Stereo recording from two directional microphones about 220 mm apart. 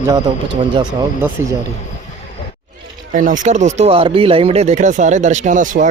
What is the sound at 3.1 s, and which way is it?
Speech, 35° right (ahead or behind).